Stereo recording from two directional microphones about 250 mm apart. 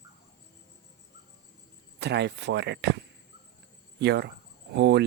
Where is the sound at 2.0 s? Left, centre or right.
Right.